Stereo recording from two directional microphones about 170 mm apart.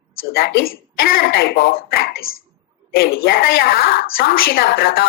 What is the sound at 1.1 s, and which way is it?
A woman's voice, 60° left (ahead or behind).